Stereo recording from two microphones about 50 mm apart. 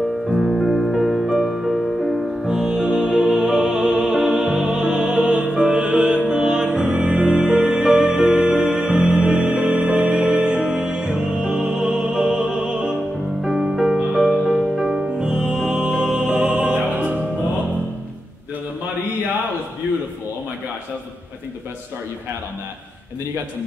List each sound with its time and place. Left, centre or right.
0.4 s music: centre
2.4 s music: centre
14.1 s music: centre
15.0 s music: centre
16.9 s music: right